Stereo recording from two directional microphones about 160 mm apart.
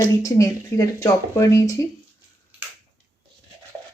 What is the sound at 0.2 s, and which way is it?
Speech, 20° left (ahead or behind).